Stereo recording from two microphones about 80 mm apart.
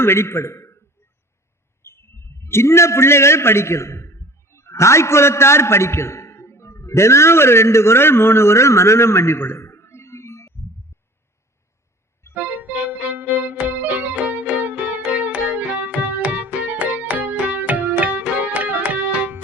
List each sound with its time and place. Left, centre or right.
0.0 s a man's voice: left
1.8 s a man's voice: left
12.3 s music: right